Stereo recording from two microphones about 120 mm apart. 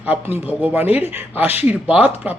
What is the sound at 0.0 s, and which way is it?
Speech, 15° right (ahead or behind).